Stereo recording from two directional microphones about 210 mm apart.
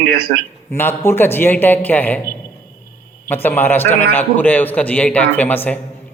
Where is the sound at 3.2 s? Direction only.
10° left (ahead or behind).